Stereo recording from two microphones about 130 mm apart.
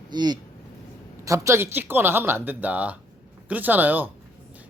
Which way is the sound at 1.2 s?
25° right (ahead or behind).